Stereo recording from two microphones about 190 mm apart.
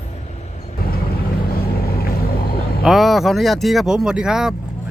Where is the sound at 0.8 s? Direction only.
50° left (ahead or behind).